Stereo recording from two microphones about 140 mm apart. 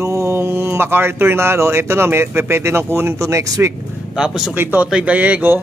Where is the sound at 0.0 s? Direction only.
20° right (ahead or behind).